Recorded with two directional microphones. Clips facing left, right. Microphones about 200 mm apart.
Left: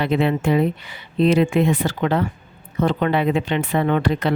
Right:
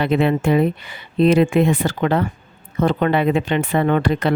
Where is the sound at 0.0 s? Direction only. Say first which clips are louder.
Right 2 dB; 55° right (ahead or behind).